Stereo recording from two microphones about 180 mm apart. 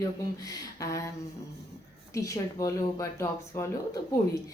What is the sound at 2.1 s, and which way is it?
A woman's voice, 15° left (ahead or behind).